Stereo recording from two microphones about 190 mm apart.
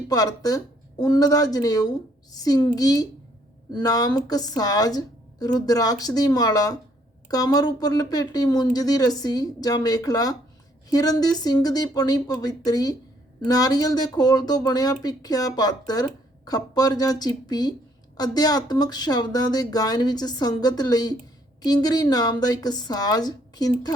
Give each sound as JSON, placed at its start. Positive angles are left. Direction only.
{"t": 0.1, "sound": "a woman's voice", "side_deg": 20}